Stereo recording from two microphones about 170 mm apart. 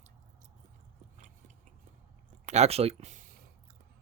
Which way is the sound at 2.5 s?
40° right (ahead or behind).